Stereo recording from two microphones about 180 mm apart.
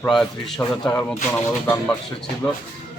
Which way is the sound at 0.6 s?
15° left (ahead or behind).